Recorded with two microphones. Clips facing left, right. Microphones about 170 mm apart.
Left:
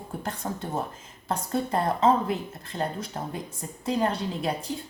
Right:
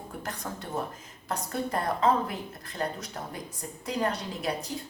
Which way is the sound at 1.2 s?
25° left (ahead or behind).